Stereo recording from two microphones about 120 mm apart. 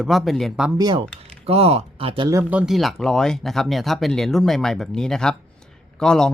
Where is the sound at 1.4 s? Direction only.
55° right (ahead or behind).